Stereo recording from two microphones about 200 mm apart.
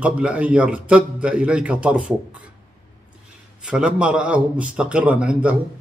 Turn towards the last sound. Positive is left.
turn(degrees=-5)  # may be behind; listen again after turning